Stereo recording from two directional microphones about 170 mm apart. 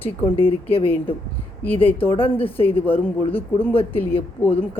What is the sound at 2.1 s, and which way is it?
A woman's voice, 35° left (ahead or behind).